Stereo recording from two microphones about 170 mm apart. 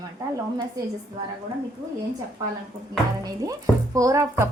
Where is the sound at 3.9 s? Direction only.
20° right (ahead or behind).